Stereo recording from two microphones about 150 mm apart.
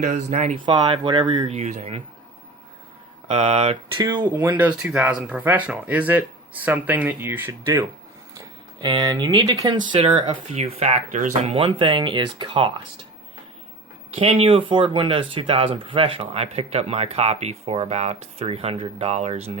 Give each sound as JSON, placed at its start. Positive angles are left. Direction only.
{"t": 0.0, "sound": "speech", "side_deg": -50}
{"t": 1.0, "sound": "speech", "side_deg": -30}
{"t": 1.5, "sound": "speech", "side_deg": -45}
{"t": 3.3, "sound": "speech", "side_deg": -40}
{"t": 3.9, "sound": "speech", "side_deg": -25}
{"t": 4.3, "sound": "speech", "side_deg": -10}
{"t": 8.4, "sound": "speech", "side_deg": -30}
{"t": 14.2, "sound": "speech", "side_deg": -40}